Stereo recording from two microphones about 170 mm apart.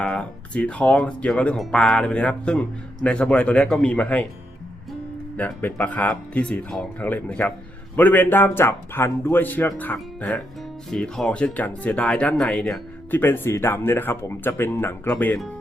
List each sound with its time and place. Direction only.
0.0 s speech: 5° left (ahead or behind)
5.4 s speech: 10° left (ahead or behind)